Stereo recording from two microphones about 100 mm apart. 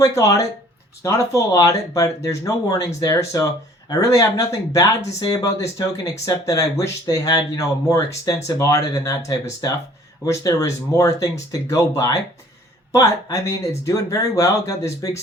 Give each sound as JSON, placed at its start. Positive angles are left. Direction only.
{"t": 0.0, "sound": "speech", "side_deg": 30}